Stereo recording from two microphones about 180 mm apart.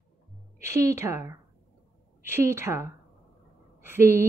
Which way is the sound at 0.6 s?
15° right (ahead or behind).